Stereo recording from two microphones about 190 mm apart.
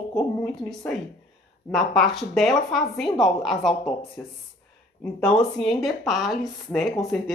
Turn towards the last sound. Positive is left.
turn(degrees=0)  # may be behind; listen again after turning